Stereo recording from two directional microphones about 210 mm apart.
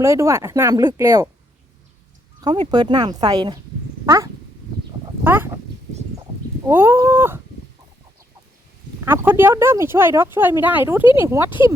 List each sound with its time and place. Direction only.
0.0 s speech: 15° right (ahead or behind)
2.4 s speech: 20° right (ahead or behind)
4.0 s cat: 15° right (ahead or behind)
5.2 s a sound: 10° right (ahead or behind)
6.7 s speech: 10° right (ahead or behind)
9.0 s speech: 10° right (ahead or behind)